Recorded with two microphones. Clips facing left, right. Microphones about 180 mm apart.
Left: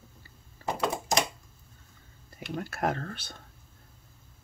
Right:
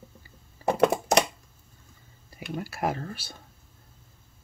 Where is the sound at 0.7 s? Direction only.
65° right (ahead or behind).